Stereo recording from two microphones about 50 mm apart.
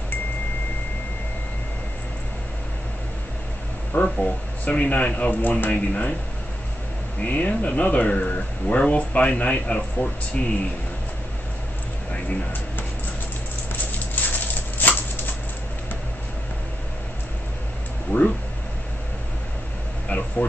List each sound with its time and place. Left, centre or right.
4.0 s speech: left
7.2 s speech: left
14.2 s a sound: left
14.8 s shuffling cards: left
18.1 s speech: left
20.1 s a sound: left